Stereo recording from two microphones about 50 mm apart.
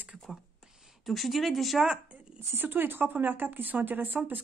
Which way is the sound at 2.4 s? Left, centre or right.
Right.